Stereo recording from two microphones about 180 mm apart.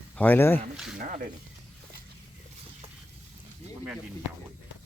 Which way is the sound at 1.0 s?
55° right (ahead or behind).